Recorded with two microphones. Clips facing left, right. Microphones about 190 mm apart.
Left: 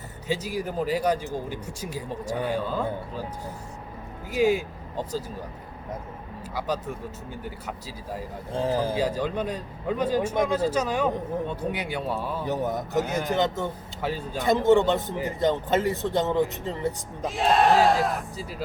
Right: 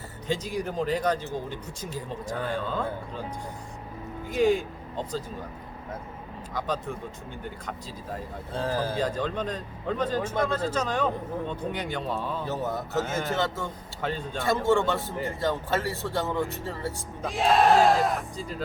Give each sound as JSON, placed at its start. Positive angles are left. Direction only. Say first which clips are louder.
{"t": 0.3, "sound": "a man's voice", "louder": "left 1 dB", "side_deg": 10}
{"t": 4.3, "sound": "speech", "louder": "left 1 dB", "side_deg": 5}
{"t": 6.5, "sound": "a man's voice", "louder": "left 1 dB", "side_deg": 10}
{"t": 14.0, "sound": "a man's voice", "louder": "left 1 dB", "side_deg": 5}
{"t": 14.4, "sound": "speech", "louder": "left 4 dB", "side_deg": 20}
{"t": 17.2, "sound": "speech", "louder": "even", "side_deg": 0}